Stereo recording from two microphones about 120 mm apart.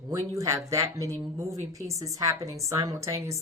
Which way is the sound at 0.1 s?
25° right (ahead or behind).